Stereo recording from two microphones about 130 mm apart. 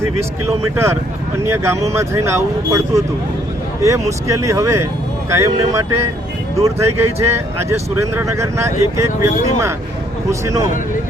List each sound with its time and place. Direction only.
0.0 s speech: 20° right (ahead or behind)